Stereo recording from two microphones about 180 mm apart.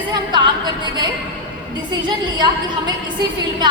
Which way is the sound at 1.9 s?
25° right (ahead or behind).